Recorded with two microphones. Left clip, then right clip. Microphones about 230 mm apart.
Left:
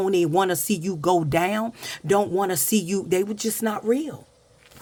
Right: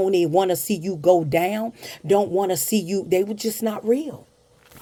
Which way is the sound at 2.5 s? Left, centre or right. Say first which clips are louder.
Right 1 dB; centre.